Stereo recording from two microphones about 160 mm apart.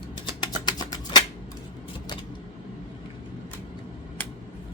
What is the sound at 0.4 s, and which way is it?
Typing, 25° left (ahead or behind).